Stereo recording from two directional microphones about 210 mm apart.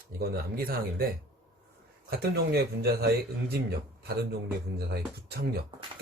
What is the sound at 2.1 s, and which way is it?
Speech, 50° right (ahead or behind).